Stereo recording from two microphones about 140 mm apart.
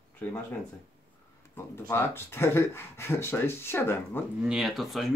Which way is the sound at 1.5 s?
20° left (ahead or behind).